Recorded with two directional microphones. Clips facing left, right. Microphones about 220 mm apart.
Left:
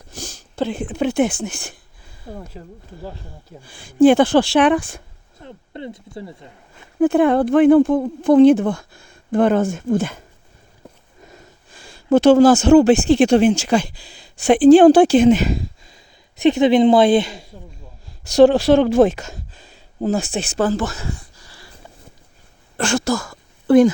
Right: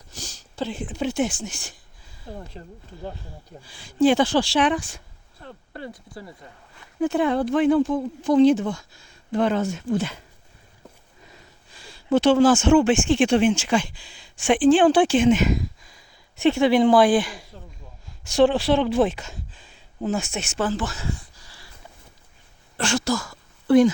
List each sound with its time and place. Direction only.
0.1 s a sound: 55° left (ahead or behind)
2.3 s speech: 5° left (ahead or behind)
3.6 s speech: 50° left (ahead or behind)
5.4 s speech: 20° left (ahead or behind)
7.0 s speech: 55° left (ahead or behind); by 16.0 s 30° left (ahead or behind)
16.4 s speech: 20° left (ahead or behind)
18.3 s speech: 40° left (ahead or behind)
22.8 s speech: 50° left (ahead or behind)